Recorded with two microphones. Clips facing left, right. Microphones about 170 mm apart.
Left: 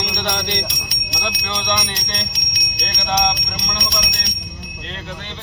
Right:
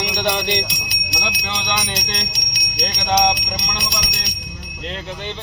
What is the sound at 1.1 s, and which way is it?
Speech, 5° right (ahead or behind).